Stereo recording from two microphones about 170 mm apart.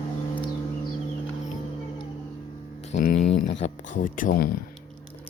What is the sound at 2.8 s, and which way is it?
Speech, 50° left (ahead or behind).